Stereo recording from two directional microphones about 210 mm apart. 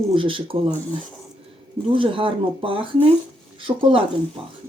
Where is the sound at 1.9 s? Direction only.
25° right (ahead or behind).